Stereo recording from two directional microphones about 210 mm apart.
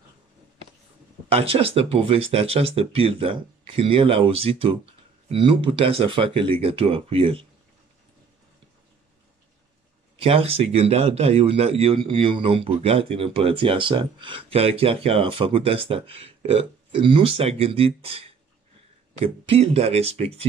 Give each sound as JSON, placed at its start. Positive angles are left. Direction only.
{"t": 1.3, "sound": "a man's voice", "side_deg": -25}
{"t": 10.2, "sound": "a man's voice", "side_deg": -25}